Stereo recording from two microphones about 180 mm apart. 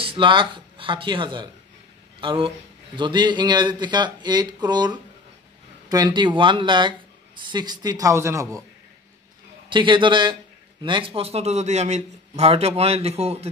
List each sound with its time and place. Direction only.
0.0 s speech: 30° right (ahead or behind)
9.7 s a man's voice: 25° right (ahead or behind)